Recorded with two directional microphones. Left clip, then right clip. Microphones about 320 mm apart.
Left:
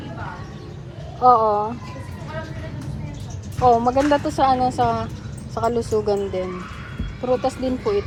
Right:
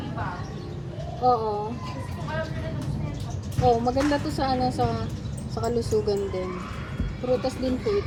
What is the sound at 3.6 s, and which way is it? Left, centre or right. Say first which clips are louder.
A woman's voice: left 6 dB; centre.